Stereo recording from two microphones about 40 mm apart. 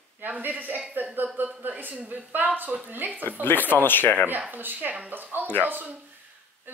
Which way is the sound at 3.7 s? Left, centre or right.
Left.